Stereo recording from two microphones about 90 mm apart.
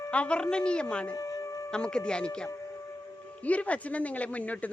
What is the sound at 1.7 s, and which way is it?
A woman's voice, 10° left (ahead or behind).